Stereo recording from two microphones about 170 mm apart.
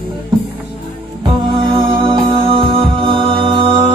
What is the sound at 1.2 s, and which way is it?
Music, 30° right (ahead or behind).